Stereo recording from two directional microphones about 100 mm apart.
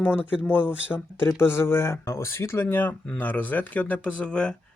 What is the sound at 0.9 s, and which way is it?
Speech, 25° left (ahead or behind).